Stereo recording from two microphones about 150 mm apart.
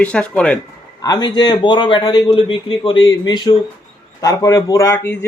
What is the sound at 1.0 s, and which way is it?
A man's voice, 25° left (ahead or behind).